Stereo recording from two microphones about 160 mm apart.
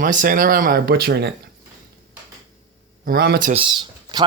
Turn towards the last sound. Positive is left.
turn(degrees=-30)  # may be behind; listen again after turning